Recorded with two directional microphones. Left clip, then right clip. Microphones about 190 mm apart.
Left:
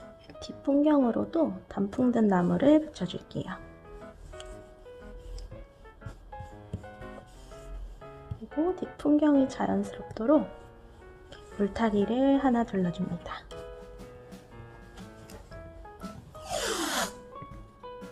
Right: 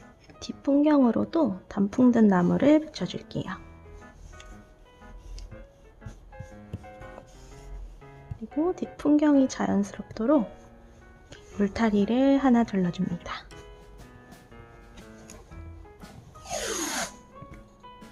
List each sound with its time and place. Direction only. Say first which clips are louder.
0.3 s a woman's voice: right 2 dB; 20° right (ahead or behind)
8.6 s a woman's voice: right 2 dB; 15° right (ahead or behind)
16.5 s a sound: even; centre (ahead or behind)
16.8 s music: left 1 dB; 10° left (ahead or behind)